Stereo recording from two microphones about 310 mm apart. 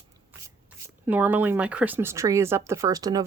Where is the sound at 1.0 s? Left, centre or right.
Centre.